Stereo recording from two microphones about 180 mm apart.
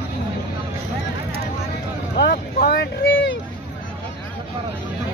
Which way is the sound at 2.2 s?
60° left (ahead or behind).